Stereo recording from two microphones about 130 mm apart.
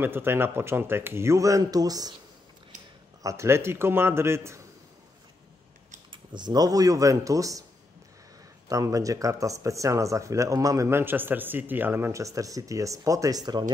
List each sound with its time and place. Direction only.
0.0 s speech: 15° right (ahead or behind)
3.2 s speech: 25° right (ahead or behind)
6.3 s speech: 30° right (ahead or behind)
8.6 s speech: 25° right (ahead or behind)